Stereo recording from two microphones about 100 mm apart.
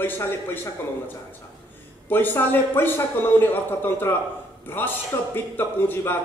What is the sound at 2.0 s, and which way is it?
A man's voice, 20° left (ahead or behind).